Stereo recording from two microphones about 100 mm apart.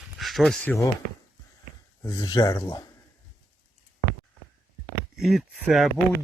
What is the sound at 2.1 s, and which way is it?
Speech, 45° left (ahead or behind).